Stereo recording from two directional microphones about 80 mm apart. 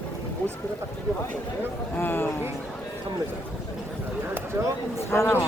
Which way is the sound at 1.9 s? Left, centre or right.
Left.